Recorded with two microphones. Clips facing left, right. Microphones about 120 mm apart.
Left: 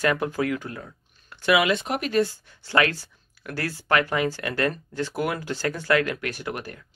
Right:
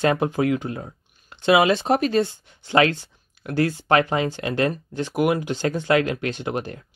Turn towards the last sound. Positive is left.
turn(degrees=-25)  # may be behind; listen again after turning